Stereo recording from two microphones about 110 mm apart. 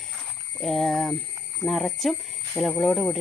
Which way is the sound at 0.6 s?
Centre (ahead or behind).